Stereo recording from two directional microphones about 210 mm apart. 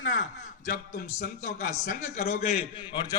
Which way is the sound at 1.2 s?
35° left (ahead or behind).